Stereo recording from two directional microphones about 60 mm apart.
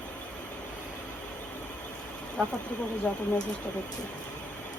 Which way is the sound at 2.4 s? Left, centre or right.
Centre.